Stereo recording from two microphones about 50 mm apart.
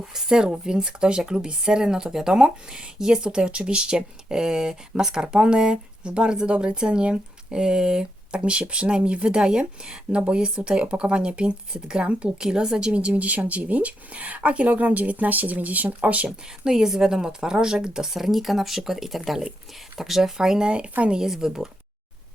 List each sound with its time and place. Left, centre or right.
0.1 s speech: centre; by 16.3 s right
16.6 s speech: centre